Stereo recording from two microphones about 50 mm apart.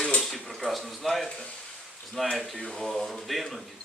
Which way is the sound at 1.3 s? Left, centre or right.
Centre.